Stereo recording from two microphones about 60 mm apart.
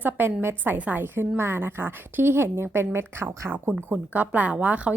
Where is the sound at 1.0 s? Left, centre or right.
Right.